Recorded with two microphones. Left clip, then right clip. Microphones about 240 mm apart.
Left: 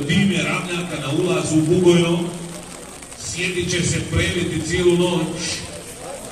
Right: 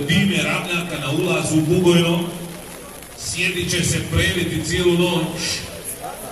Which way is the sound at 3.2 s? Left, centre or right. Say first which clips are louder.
Right 1 dB; right.